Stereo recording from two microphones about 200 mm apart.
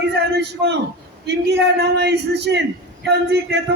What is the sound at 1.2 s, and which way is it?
A man's voice, 55° right (ahead or behind).